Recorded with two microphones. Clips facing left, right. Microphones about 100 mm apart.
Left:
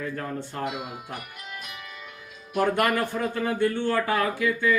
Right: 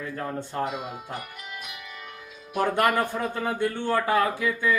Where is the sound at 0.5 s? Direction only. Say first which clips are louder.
Right 2 dB; 25° right (ahead or behind).